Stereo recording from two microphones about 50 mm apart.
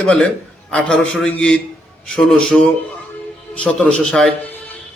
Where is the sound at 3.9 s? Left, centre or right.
Centre.